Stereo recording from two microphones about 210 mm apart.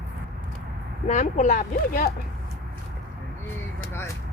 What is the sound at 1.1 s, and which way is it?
Speech, 35° left (ahead or behind).